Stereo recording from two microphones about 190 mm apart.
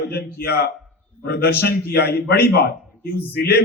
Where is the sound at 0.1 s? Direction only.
55° left (ahead or behind).